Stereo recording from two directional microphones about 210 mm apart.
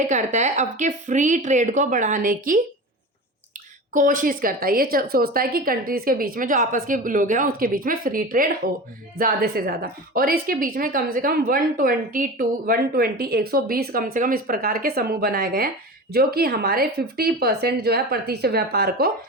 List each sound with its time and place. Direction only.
0.1 s a woman's voice: 35° right (ahead or behind)
3.9 s a woman's voice: 40° right (ahead or behind)